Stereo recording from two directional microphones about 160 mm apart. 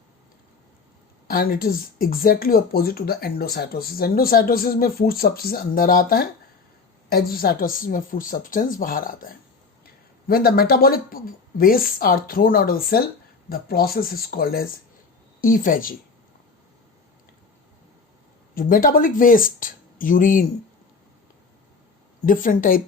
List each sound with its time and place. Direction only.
1.3 s speech: 65° left (ahead or behind)
18.5 s speech: 60° left (ahead or behind)
22.3 s speech: 60° left (ahead or behind)